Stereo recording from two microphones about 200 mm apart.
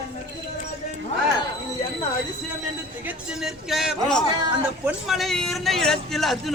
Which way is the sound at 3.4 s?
Centre (ahead or behind).